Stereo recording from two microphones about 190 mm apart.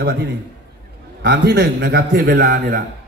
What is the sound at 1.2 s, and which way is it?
A man's voice, 65° right (ahead or behind).